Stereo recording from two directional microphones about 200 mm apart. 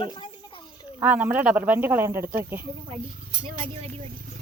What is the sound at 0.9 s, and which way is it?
Speech, 10° right (ahead or behind).